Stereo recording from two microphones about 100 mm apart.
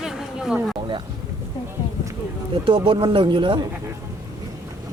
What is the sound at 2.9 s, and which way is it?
Speech, 60° right (ahead or behind).